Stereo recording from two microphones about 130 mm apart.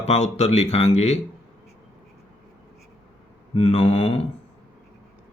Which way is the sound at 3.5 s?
50° left (ahead or behind).